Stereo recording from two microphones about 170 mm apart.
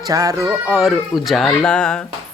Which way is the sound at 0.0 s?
20° right (ahead or behind).